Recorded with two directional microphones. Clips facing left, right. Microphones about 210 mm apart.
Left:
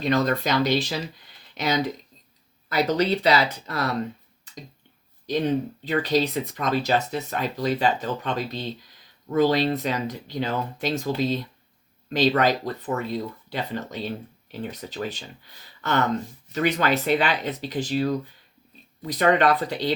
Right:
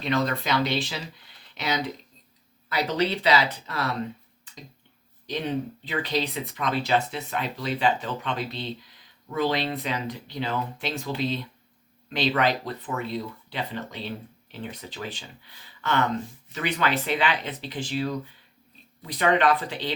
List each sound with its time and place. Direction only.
0.0 s speech: 40° left (ahead or behind)
5.2 s speech: 40° left (ahead or behind)